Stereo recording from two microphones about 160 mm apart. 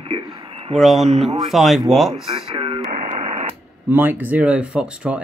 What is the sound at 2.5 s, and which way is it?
Radio, 30° right (ahead or behind).